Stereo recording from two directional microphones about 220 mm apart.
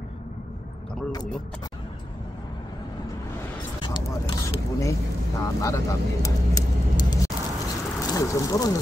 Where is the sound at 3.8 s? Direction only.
20° left (ahead or behind).